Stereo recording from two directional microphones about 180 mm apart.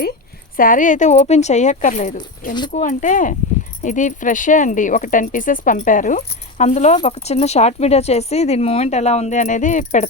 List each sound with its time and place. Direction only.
0.5 s speech: 50° left (ahead or behind)